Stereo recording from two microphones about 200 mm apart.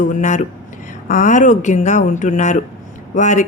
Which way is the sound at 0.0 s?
40° left (ahead or behind).